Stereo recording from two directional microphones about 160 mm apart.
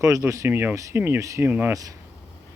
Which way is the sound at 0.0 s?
20° right (ahead or behind).